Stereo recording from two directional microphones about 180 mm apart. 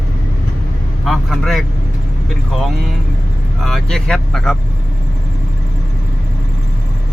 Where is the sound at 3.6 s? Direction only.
Centre (ahead or behind).